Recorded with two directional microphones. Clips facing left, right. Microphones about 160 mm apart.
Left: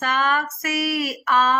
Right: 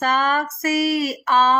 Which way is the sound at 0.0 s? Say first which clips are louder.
Right 2 dB; 35° right (ahead or behind).